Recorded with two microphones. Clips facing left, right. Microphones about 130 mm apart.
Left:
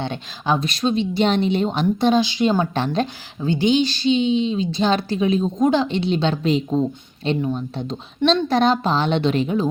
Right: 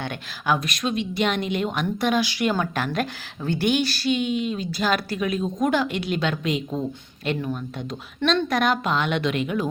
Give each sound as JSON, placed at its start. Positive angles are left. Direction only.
{"t": 0.0, "sound": "a woman's voice", "side_deg": 25}
{"t": 3.4, "sound": "a woman's voice", "side_deg": 15}